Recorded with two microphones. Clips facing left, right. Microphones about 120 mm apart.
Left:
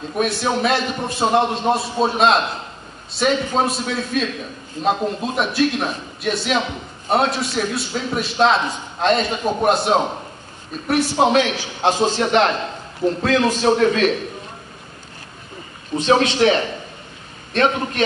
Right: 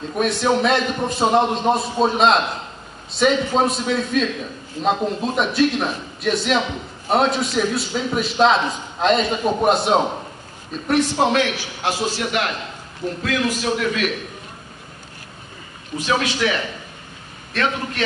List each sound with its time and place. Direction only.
0.1 s a man's voice: 5° left (ahead or behind)
11.1 s a man's voice: 20° left (ahead or behind)
16.0 s a man's voice: 30° left (ahead or behind)